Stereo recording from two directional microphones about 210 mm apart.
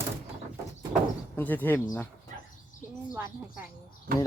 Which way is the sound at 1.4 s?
10° left (ahead or behind).